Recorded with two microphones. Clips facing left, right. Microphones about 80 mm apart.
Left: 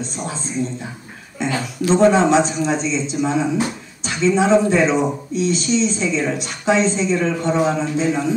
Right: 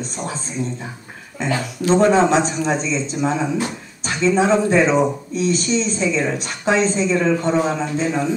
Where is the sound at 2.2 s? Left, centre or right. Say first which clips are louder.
Left 1 dB; right.